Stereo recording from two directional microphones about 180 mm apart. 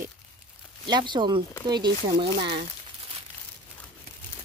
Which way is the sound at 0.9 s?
25° right (ahead or behind).